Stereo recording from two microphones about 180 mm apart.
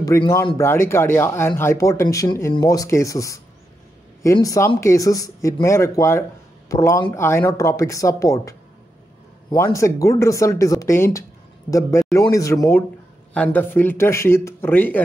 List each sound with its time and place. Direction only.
0.0 s speech: 20° left (ahead or behind)